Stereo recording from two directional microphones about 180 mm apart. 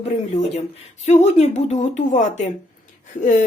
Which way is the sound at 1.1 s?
40° left (ahead or behind).